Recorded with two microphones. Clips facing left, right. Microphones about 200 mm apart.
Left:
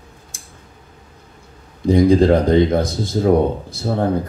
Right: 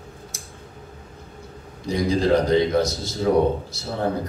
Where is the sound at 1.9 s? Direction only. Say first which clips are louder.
Left 7 dB; 55° left (ahead or behind).